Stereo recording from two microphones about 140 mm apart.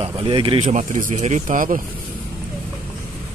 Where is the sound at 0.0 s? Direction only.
35° right (ahead or behind).